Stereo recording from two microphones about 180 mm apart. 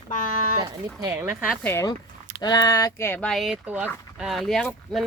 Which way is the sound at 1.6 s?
15° left (ahead or behind).